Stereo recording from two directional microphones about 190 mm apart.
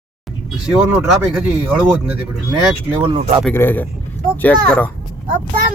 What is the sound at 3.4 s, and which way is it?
Speech, 10° left (ahead or behind).